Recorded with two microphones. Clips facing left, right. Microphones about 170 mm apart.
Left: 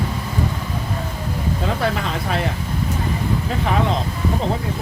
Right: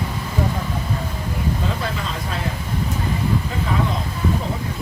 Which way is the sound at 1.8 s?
70° left (ahead or behind).